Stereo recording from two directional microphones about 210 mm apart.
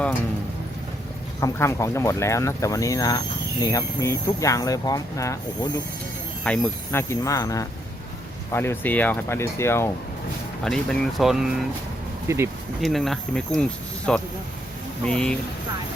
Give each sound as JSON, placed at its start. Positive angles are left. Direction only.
{"t": 1.4, "sound": "speech", "side_deg": 15}
{"t": 10.6, "sound": "speech", "side_deg": 0}
{"t": 12.3, "sound": "speech", "side_deg": -15}
{"t": 12.8, "sound": "speech", "side_deg": 0}